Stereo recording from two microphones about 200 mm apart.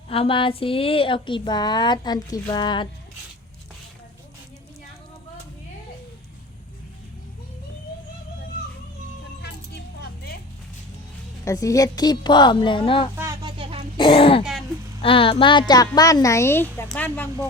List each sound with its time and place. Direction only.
0.1 s speech: 25° left (ahead or behind)
11.4 s speech: 15° left (ahead or behind)
13.1 s a sound: 20° right (ahead or behind)
13.9 s speech: 25° left (ahead or behind); by 17.2 s 10° left (ahead or behind)